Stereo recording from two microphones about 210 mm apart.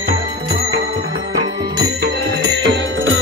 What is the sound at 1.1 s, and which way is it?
Music, 50° right (ahead or behind).